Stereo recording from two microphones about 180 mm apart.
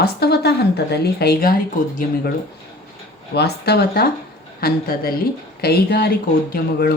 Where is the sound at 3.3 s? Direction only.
65° left (ahead or behind).